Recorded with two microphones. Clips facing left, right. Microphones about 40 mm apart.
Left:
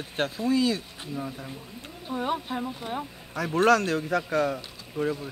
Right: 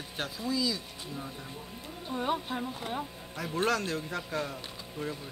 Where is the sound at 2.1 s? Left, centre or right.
Centre.